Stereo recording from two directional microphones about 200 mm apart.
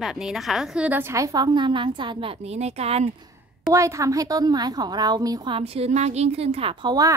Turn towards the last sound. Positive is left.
turn(degrees=-20)  # may be behind; listen again after turning